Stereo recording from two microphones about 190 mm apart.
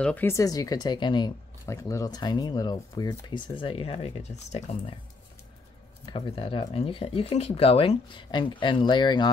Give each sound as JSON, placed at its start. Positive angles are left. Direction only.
{"t": 0.0, "sound": "speech", "side_deg": 10}
{"t": 6.0, "sound": "speech", "side_deg": 25}